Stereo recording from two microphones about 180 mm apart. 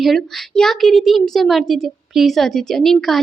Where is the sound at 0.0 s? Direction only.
Centre (ahead or behind).